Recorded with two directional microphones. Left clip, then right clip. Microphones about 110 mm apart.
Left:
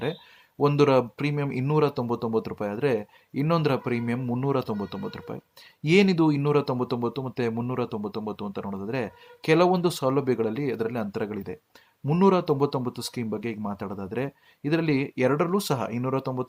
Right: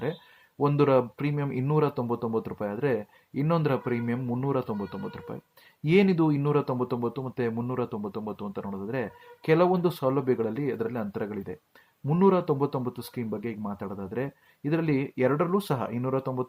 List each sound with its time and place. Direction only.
0.6 s speech: 30° left (ahead or behind)